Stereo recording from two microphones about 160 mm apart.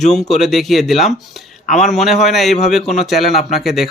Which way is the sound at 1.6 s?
50° left (ahead or behind).